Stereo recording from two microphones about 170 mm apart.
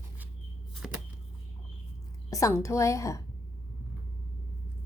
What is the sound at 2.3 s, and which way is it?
Speech, 15° left (ahead or behind).